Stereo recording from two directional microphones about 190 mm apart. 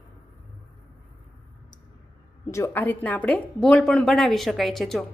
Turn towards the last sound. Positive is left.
turn(degrees=0)  # may be behind; listen again after turning